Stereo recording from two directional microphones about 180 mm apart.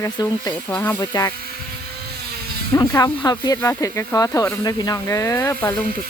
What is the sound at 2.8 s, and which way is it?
Speech, 20° left (ahead or behind).